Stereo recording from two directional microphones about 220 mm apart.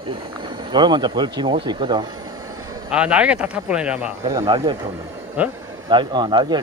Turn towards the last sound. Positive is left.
turn(degrees=-20)  # may be behind; listen again after turning